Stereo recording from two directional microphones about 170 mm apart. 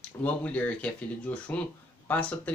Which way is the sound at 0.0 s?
10° left (ahead or behind).